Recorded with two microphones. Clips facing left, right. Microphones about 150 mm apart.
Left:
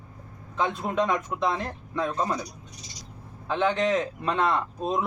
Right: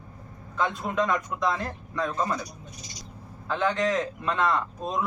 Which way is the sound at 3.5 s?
20° left (ahead or behind).